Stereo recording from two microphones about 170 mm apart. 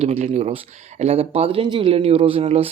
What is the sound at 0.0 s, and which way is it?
Speech, 35° right (ahead or behind).